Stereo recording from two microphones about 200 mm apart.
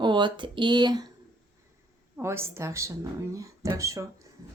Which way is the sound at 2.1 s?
10° right (ahead or behind).